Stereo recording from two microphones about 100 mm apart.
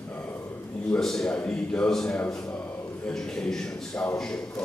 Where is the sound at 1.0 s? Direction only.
5° left (ahead or behind).